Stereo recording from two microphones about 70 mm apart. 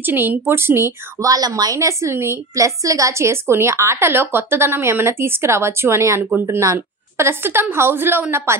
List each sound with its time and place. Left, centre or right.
0.0 s a woman's voice: right
1.2 s a woman's voice: right